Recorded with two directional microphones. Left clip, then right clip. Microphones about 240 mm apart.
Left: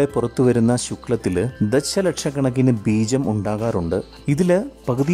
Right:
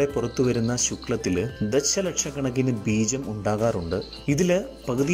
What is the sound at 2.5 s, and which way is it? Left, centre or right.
Speech, left.